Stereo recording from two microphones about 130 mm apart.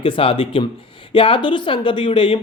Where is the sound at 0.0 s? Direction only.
45° left (ahead or behind).